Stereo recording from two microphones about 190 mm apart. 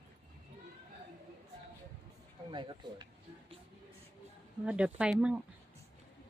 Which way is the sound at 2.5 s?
25° right (ahead or behind).